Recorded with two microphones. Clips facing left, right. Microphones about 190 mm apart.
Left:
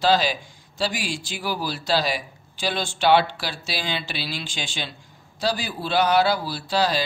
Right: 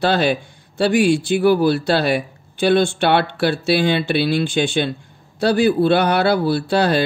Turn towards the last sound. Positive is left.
turn(degrees=-60)  # may be behind; listen again after turning